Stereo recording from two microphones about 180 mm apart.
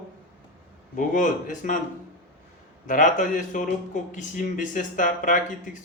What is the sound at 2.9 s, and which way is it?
A man's voice, 45° left (ahead or behind).